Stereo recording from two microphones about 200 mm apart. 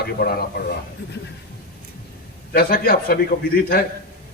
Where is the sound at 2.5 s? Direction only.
50° left (ahead or behind).